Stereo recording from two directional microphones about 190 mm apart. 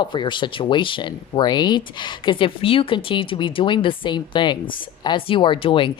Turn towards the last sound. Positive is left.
turn(degrees=25)  # may be behind; listen again after turning